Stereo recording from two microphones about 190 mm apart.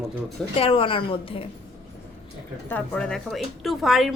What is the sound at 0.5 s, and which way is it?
Speech, 30° left (ahead or behind).